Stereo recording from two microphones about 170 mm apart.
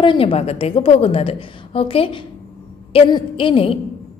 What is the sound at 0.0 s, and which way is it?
A woman's voice, 30° left (ahead or behind).